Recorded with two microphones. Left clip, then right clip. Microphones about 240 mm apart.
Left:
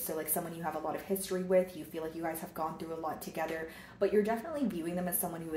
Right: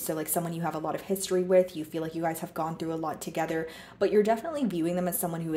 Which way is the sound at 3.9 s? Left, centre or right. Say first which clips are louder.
Right 6 dB; right.